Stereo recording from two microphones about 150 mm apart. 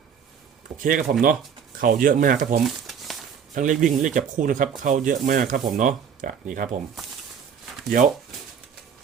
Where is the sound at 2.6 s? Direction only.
Centre (ahead or behind).